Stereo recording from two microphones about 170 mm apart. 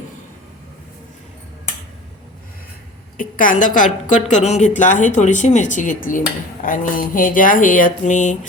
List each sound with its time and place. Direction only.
3.2 s a woman's voice: 55° left (ahead or behind)